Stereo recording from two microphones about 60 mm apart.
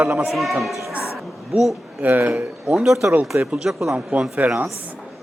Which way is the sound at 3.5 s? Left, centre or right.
Centre.